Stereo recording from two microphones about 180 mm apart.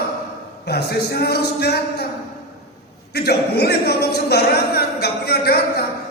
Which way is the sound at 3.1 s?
60° left (ahead or behind).